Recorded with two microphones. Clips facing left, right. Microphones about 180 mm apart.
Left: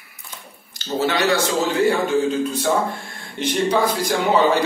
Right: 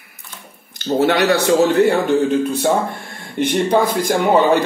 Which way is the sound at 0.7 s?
55° right (ahead or behind).